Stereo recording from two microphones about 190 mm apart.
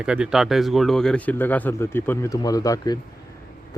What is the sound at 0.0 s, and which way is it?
Speech, 5° right (ahead or behind).